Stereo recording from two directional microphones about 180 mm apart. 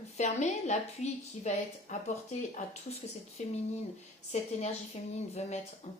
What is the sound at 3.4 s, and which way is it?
Speech, 40° left (ahead or behind).